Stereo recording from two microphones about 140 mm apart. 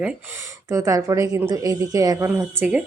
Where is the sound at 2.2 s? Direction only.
15° right (ahead or behind).